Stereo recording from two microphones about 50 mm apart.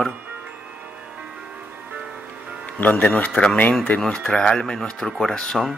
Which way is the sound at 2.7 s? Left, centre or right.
Left.